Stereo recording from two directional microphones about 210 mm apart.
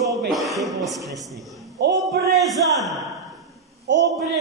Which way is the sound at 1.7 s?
50° right (ahead or behind).